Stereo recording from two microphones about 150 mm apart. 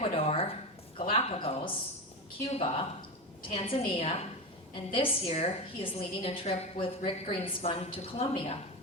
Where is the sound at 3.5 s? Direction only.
40° left (ahead or behind).